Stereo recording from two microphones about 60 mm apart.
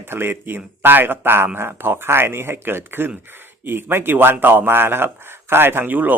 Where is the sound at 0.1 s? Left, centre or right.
Right.